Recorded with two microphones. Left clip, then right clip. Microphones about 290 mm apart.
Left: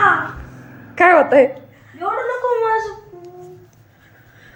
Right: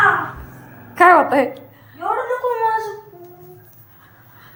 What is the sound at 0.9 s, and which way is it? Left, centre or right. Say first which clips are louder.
Speech: even; centre.